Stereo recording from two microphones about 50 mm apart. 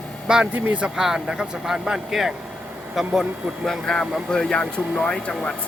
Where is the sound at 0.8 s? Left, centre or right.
Centre.